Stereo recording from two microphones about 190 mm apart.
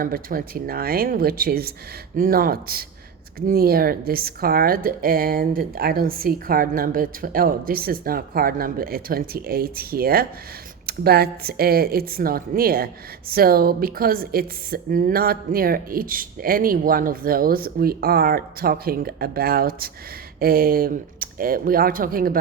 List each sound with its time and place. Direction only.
0.0 s speech: 50° right (ahead or behind)